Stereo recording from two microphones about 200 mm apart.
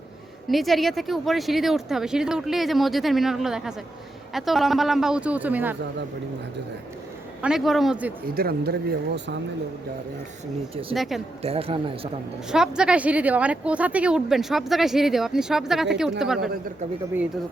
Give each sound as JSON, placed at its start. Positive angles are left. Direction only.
{"t": 0.4, "sound": "speech", "side_deg": 0}
{"t": 7.4, "sound": "speech", "side_deg": 0}
{"t": 8.4, "sound": "speech", "side_deg": -50}
{"t": 9.1, "sound": "speech", "side_deg": -60}
{"t": 10.9, "sound": "speech", "side_deg": 0}
{"t": 11.4, "sound": "a man's voice", "side_deg": -30}
{"t": 12.5, "sound": "speech", "side_deg": -5}